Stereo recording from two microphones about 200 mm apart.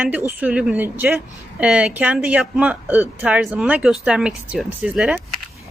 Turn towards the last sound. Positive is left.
turn(degrees=-5)  # may be behind; listen again after turning